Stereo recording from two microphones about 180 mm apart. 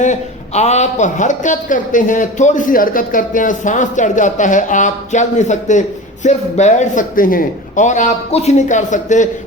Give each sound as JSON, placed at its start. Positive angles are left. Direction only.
{"t": 0.0, "sound": "a woman's voice", "side_deg": 40}